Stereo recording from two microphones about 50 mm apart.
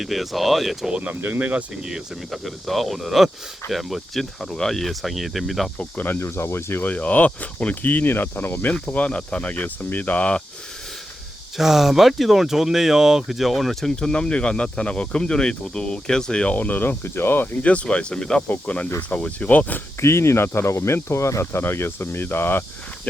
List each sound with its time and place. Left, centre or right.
0.0 s speech: centre
0.9 s speech: right
2.3 s speech: centre
6.0 s speech: left
6.8 s speech: left
8.9 s speech: left
11.5 s speech: centre
14.0 s speech: centre
16.6 s speech: left
17.6 s speech: left
18.4 s speech: left
20.0 s speech: left
20.7 s speech: left
21.6 s speech: left